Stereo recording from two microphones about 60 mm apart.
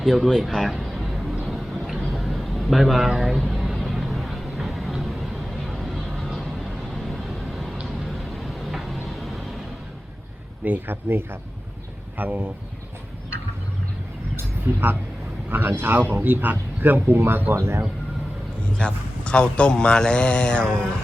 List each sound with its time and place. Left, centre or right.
0.0 s a sound: centre
3.9 s music: centre
5.6 s vehicle: centre
10.6 s a man's voice: right
14.3 s speech: right
17.6 s speech: right
18.8 s a man's voice: centre